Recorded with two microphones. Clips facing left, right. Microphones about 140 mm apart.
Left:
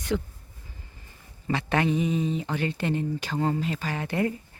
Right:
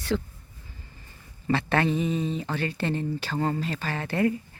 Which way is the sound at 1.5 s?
15° left (ahead or behind).